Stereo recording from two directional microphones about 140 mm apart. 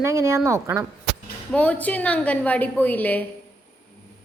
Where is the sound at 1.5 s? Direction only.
10° left (ahead or behind).